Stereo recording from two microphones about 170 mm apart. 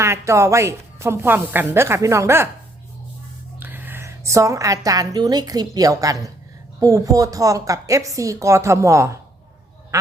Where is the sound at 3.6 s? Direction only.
10° right (ahead or behind).